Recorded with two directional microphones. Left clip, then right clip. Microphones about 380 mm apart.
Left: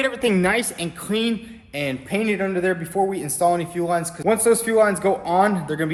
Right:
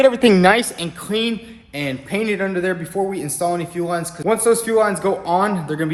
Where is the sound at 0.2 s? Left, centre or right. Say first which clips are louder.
Right 7 dB; right.